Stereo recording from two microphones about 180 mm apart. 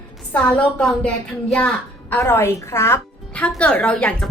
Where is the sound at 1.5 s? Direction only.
10° left (ahead or behind).